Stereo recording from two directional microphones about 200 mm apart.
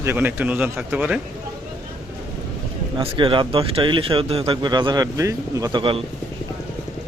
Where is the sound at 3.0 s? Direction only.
25° right (ahead or behind).